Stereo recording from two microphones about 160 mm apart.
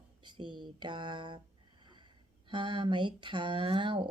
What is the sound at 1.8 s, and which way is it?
Speech, 30° right (ahead or behind).